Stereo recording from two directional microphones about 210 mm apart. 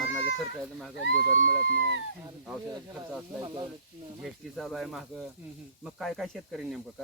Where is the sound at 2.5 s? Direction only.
5° right (ahead or behind).